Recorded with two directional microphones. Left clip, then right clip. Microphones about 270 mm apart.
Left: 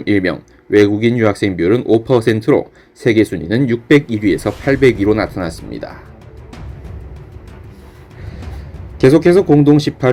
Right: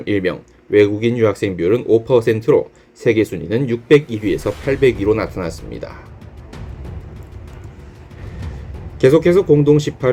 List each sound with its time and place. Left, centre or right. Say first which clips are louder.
0.0 s speech: left 3 dB; left
9.0 s speech: left 2 dB; left